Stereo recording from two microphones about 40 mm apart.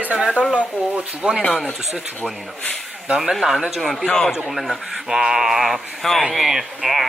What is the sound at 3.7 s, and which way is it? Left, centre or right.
Speech, centre.